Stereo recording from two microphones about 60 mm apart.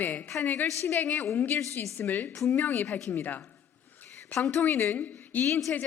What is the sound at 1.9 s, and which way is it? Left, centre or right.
A woman's voice, left.